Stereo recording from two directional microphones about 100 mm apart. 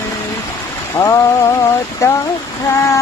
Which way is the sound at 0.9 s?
35° left (ahead or behind).